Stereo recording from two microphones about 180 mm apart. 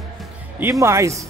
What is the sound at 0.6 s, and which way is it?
Speech, 15° right (ahead or behind).